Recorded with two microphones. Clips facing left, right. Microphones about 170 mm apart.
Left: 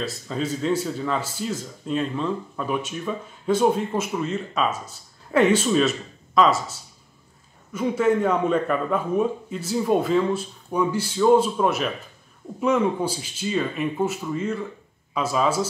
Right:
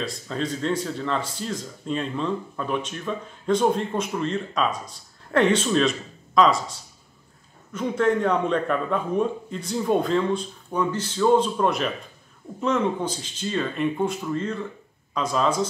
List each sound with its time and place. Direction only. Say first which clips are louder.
0.0 s speech: left 1 dB; 5° left (ahead or behind)